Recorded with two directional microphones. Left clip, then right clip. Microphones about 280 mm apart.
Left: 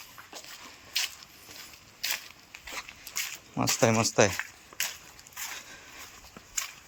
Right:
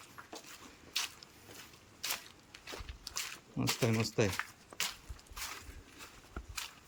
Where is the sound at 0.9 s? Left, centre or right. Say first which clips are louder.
Left 7 dB; centre.